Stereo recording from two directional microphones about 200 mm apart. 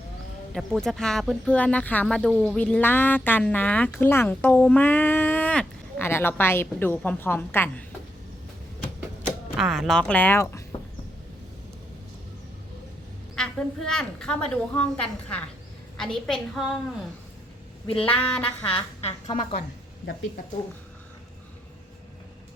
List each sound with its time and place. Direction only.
0.5 s speech: centre (ahead or behind)
9.6 s a woman's voice: centre (ahead or behind)
13.9 s a woman's voice: 5° left (ahead or behind)
17.8 s speech: 25° left (ahead or behind)